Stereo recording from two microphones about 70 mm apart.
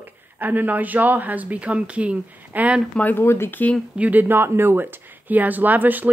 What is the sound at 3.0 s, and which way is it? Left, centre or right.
Speech, left.